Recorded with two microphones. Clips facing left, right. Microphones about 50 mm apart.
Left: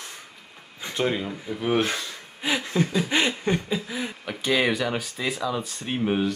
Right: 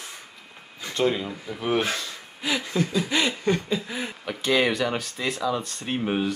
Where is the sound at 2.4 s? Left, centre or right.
Left.